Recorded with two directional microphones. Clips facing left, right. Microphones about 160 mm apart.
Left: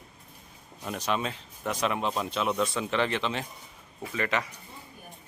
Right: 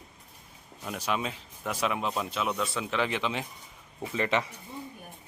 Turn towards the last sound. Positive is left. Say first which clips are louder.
# right 2 dB
turn(degrees=-25)  # may be behind; listen again after turning